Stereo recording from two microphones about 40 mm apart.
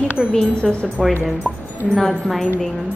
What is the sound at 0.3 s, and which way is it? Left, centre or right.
Speech, left.